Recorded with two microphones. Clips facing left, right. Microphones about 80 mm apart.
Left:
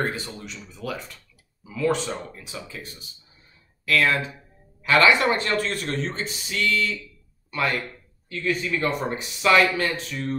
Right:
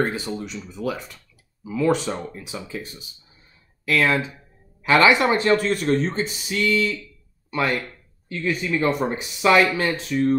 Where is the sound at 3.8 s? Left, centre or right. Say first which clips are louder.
Right 1 dB; centre.